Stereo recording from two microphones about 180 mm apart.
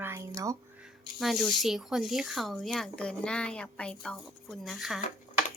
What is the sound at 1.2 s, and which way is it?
Speech, centre (ahead or behind).